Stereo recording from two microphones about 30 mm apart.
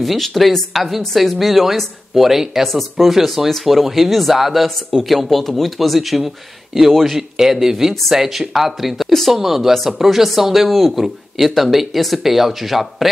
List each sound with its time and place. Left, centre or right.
0.0 s speech: centre
10.7 s speech: centre